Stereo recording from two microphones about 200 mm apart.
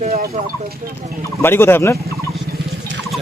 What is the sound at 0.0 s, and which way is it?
Horse, 45° right (ahead or behind).